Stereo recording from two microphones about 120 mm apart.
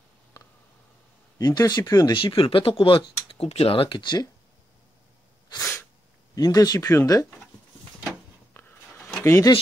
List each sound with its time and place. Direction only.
1.4 s speech: 35° left (ahead or behind)
2.1 s speech: 45° left (ahead or behind)
5.6 s sneeze: 20° left (ahead or behind)
6.3 s speech: 30° left (ahead or behind)
9.2 s speech: 20° left (ahead or behind)